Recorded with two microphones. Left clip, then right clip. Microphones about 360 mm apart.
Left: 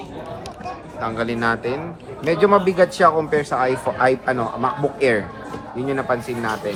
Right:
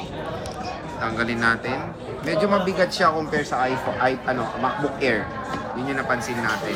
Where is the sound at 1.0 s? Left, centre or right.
Centre.